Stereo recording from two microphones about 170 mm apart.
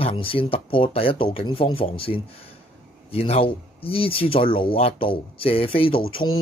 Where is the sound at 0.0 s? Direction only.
30° left (ahead or behind).